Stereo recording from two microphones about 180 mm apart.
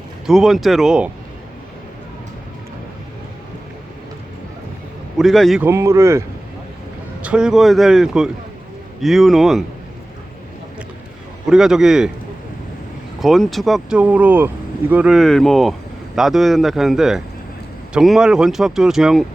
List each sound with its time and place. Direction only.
0.3 s speech: centre (ahead or behind)
5.1 s speech: centre (ahead or behind)
5.6 s speech: 15° right (ahead or behind)
11.4 s speech: 5° right (ahead or behind)
13.1 s speech: centre (ahead or behind)